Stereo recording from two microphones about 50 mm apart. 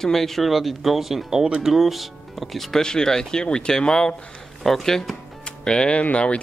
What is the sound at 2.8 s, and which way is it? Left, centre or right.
Speech, centre.